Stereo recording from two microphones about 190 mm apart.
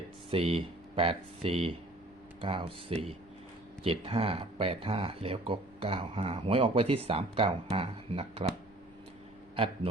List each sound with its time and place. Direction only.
0.3 s speech: 30° right (ahead or behind)